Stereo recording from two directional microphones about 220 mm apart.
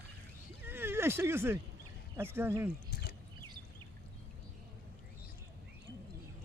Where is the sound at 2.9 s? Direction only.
45° left (ahead or behind).